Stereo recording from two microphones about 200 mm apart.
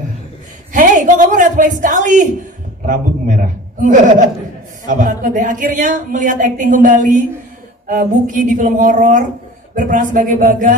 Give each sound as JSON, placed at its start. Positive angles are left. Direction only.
{"t": 0.7, "sound": "speech", "side_deg": -40}
{"t": 3.8, "sound": "speech", "side_deg": -40}